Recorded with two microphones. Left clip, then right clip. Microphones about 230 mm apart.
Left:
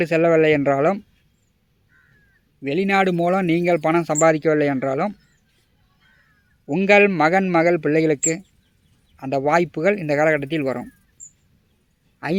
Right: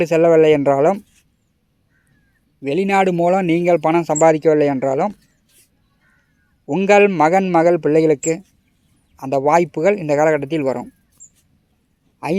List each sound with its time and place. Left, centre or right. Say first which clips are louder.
0.0 s speech: right 4 dB; centre
2.6 s speech: right 3 dB; centre
6.7 s speech: right 2 dB; centre